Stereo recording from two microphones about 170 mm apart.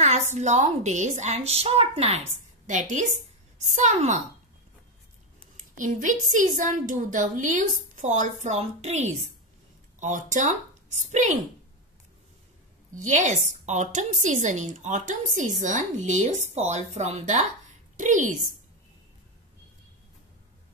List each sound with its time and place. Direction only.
0.3 s speech: 45° right (ahead or behind)
5.6 s speech: 50° right (ahead or behind)
12.9 s speech: 45° right (ahead or behind)